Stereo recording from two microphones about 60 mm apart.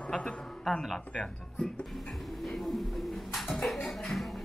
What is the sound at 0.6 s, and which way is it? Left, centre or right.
Speech, centre.